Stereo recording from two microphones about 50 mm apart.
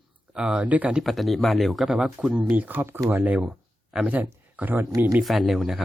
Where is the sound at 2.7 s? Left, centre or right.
Right.